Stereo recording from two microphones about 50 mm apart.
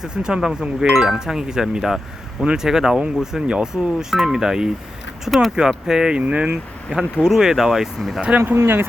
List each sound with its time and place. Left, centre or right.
0.0 s speech: centre
6.2 s speech: right
6.9 s speech: centre
8.6 s speech: right